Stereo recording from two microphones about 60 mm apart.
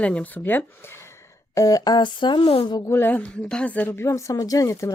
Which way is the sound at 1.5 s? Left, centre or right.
Left.